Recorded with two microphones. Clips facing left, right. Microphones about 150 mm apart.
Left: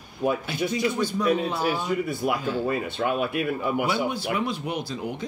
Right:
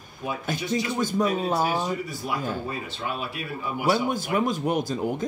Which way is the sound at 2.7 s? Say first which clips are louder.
Left 6 dB; 55° left (ahead or behind).